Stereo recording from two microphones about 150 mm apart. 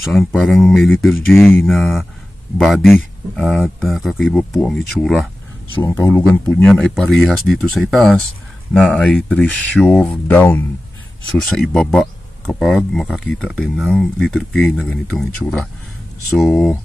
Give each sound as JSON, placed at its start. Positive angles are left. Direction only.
{"t": 0.0, "sound": "speech", "side_deg": 0}
{"t": 1.3, "sound": "speech", "side_deg": 15}
{"t": 1.8, "sound": "speech", "side_deg": 0}
{"t": 5.8, "sound": "speech", "side_deg": 15}
{"t": 6.6, "sound": "speech", "side_deg": 5}